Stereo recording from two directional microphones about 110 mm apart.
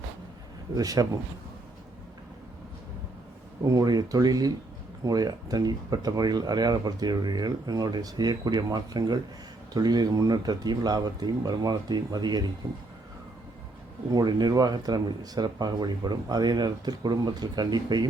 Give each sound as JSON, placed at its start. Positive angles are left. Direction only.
{"t": 0.8, "sound": "speech", "side_deg": -35}
{"t": 3.6, "sound": "speech", "side_deg": -35}
{"t": 14.1, "sound": "speech", "side_deg": -35}